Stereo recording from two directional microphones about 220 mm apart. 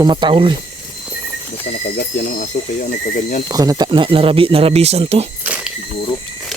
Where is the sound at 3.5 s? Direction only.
15° right (ahead or behind).